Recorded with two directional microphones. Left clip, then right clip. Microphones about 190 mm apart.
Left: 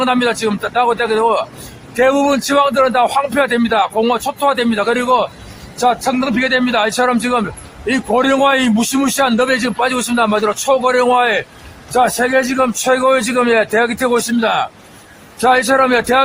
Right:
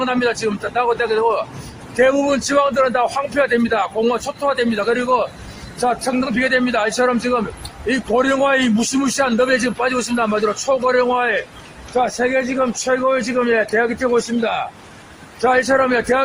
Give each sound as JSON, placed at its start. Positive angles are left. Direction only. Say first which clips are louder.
{"t": 0.0, "sound": "a man's voice", "louder": "left 4 dB", "side_deg": 30}
{"t": 15.4, "sound": "a man's voice", "louder": "left 3 dB", "side_deg": 30}